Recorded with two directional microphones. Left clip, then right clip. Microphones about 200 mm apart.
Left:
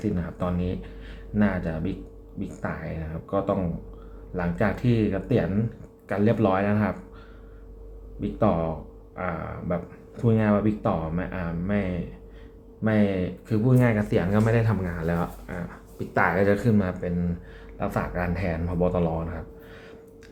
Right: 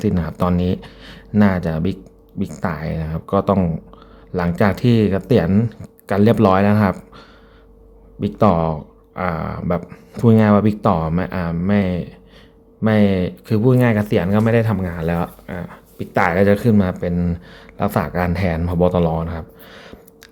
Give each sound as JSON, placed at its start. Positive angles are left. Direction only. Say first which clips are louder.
{"t": 0.0, "sound": "speech", "louder": "right 9 dB", "side_deg": -50}
{"t": 8.2, "sound": "speech", "louder": "right 8 dB", "side_deg": -50}